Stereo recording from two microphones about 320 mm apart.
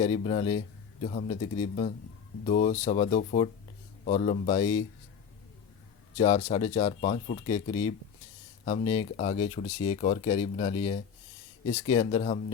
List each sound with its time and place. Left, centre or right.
0.0 s speech: centre
6.1 s speech: left